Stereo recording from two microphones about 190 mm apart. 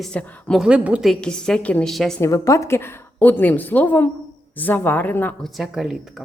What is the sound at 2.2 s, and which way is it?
Speech, 15° left (ahead or behind).